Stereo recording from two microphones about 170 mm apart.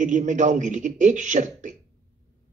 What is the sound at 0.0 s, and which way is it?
A man's voice, 50° right (ahead or behind).